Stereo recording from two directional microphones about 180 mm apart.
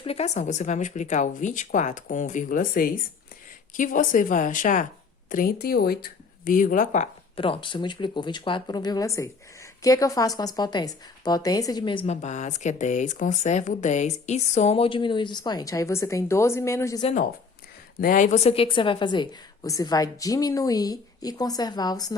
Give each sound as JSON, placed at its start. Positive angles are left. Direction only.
{"t": 0.0, "sound": "speech", "side_deg": 35}
{"t": 7.3, "sound": "speech", "side_deg": 30}
{"t": 18.0, "sound": "speech", "side_deg": 45}